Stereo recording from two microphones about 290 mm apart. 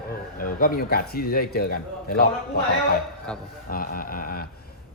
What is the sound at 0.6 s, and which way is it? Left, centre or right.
A man's voice, left.